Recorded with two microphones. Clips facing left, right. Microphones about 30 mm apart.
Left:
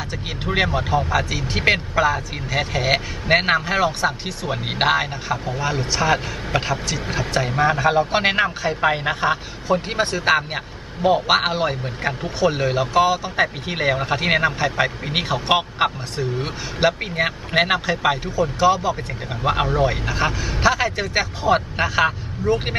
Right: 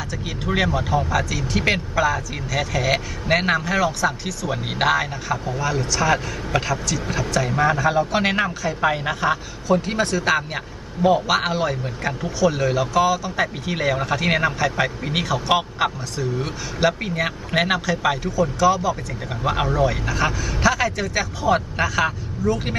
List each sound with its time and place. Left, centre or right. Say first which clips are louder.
0.7 s a man's voice: left 1 dB; left